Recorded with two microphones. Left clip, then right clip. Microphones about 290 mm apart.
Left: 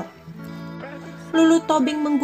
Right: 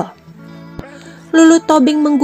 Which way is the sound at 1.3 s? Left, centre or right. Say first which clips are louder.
Right 8 dB; right.